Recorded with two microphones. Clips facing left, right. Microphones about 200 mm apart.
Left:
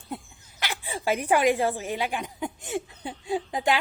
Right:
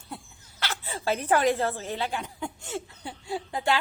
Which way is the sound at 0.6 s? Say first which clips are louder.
Left 1 dB; 15° left (ahead or behind).